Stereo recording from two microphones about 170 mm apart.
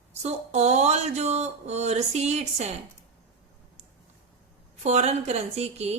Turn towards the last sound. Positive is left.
turn(degrees=-40)  # may be behind; listen again after turning